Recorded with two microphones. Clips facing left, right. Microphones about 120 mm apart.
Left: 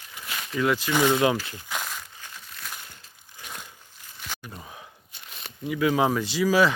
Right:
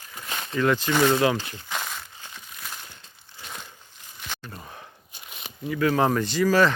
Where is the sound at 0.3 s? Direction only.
35° right (ahead or behind).